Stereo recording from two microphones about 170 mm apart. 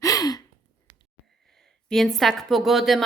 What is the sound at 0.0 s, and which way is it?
Gasp, 20° left (ahead or behind).